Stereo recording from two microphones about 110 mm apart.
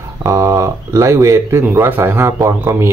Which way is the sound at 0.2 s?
25° right (ahead or behind).